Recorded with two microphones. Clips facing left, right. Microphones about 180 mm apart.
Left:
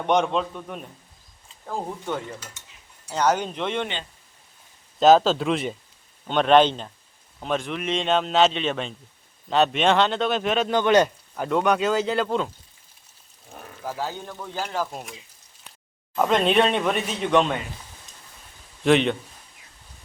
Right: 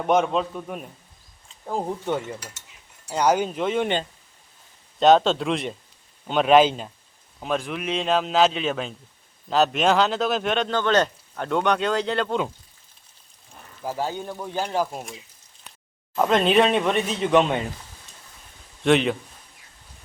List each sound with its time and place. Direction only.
0.0 s speech: 5° right (ahead or behind)
1.6 s speech: 15° right (ahead or behind)
4.9 s speech: centre (ahead or behind)
10.7 s speech: 15° left (ahead or behind)
14.0 s speech: 15° right (ahead or behind)
16.1 s speech: centre (ahead or behind)
18.8 s a man's voice: centre (ahead or behind)